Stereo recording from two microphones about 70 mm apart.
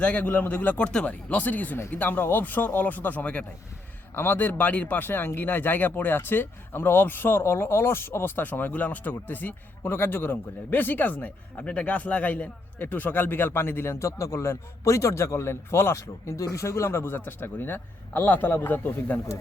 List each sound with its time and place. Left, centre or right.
0.0 s speech: centre
11.6 s a man's voice: centre